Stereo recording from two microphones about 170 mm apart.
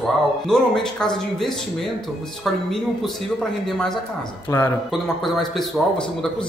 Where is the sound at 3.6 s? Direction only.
Centre (ahead or behind).